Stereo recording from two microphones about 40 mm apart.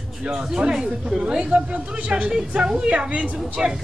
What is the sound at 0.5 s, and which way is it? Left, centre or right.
A woman's voice, right.